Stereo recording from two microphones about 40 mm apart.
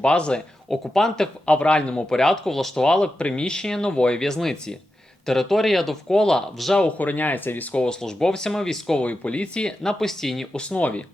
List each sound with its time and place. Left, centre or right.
0.0 s speech: left
0.7 s speech: centre
1.5 s speech: left
2.1 s speech: centre
2.8 s speech: left
4.2 s speech: centre
6.6 s speech: centre
7.0 s speech: left
7.7 s speech: left
8.0 s speech: centre
9.0 s speech: left
10.0 s speech: centre
10.5 s speech: left
10.8 s speech: left